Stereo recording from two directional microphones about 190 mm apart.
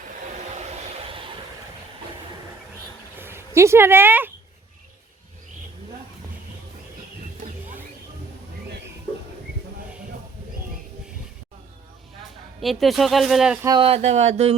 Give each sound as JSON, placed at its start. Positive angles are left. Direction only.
{"t": 0.3, "sound": "hair dryer", "side_deg": -35}
{"t": 3.2, "sound": "speech", "side_deg": -10}
{"t": 12.6, "sound": "speech", "side_deg": 0}
{"t": 13.7, "sound": "speech", "side_deg": -25}